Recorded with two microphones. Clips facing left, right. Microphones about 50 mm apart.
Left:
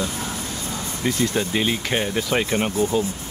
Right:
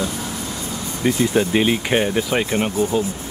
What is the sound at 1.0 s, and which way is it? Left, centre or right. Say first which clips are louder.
Speech: right 5 dB; centre.